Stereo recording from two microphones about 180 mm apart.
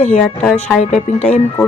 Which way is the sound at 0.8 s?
40° left (ahead or behind).